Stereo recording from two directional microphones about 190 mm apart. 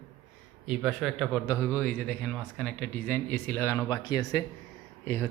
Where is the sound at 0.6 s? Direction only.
Centre (ahead or behind).